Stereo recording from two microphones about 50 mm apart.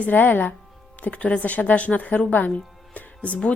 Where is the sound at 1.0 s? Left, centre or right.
Left.